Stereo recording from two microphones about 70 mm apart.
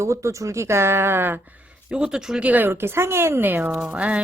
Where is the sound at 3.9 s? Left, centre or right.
Centre.